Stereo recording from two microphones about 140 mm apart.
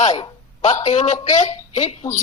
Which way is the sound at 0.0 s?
55° left (ahead or behind).